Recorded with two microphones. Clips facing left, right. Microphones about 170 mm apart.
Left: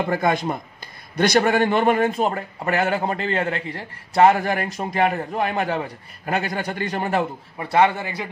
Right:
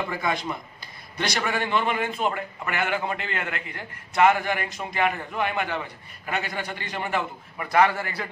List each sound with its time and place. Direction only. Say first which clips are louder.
0.1 s a man's voice: left 7 dB; 50° left (ahead or behind); by 8.3 s 20° left (ahead or behind)